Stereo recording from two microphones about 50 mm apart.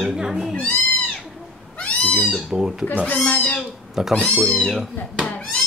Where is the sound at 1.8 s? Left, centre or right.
Left.